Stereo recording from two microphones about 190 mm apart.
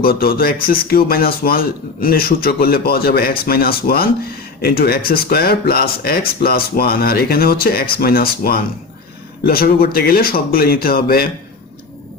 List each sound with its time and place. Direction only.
0.0 s speech: 50° left (ahead or behind)